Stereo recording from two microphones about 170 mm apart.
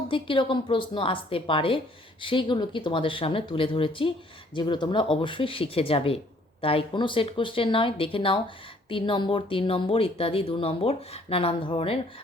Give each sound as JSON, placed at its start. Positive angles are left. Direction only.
{"t": 0.1, "sound": "speech", "side_deg": 30}